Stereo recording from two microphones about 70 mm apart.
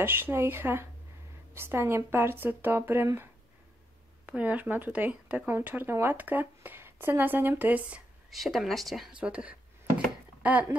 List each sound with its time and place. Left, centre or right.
0.0 s speech: right
4.3 s speech: right
8.3 s speech: centre
9.2 s a sound: centre